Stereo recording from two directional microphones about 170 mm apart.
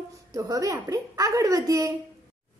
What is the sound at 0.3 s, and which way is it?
A woman's voice, 20° right (ahead or behind).